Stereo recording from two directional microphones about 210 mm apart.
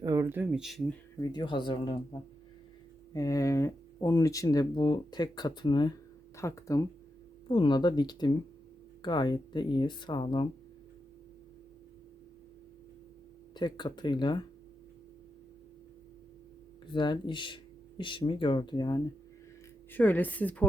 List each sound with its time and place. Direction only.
0.0 s speech: 15° right (ahead or behind); by 0.9 s centre (ahead or behind)
1.2 s speech: 20° left (ahead or behind)
3.1 s speech: 15° left (ahead or behind)
13.6 s speech: 20° left (ahead or behind)
16.9 s speech: 20° left (ahead or behind)
19.9 s speech: 10° left (ahead or behind)